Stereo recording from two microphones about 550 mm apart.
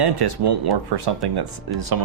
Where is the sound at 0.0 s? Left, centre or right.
Right.